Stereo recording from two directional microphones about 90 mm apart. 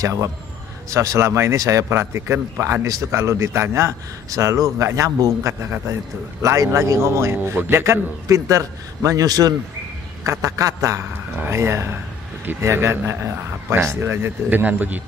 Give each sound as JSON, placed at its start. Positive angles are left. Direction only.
{"t": 0.0, "sound": "a man's voice", "side_deg": -35}